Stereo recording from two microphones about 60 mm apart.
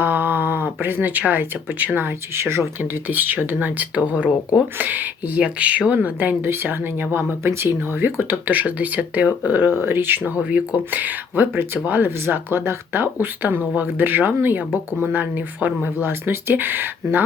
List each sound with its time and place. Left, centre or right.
0.0 s speech: right
2.8 s speech: right
6.4 s speech: right
9.6 s speech: right